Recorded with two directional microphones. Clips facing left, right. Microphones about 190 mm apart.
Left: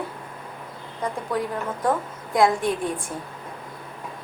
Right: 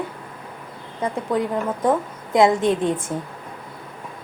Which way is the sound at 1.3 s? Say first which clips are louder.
Right 6 dB; 20° right (ahead or behind).